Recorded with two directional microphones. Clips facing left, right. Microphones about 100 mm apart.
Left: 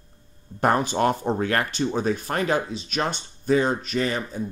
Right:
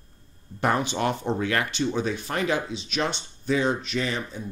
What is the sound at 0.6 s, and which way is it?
Speech, 40° left (ahead or behind).